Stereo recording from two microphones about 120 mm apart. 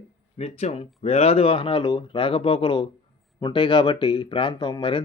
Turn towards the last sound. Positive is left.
turn(degrees=40)  # may be behind; listen again after turning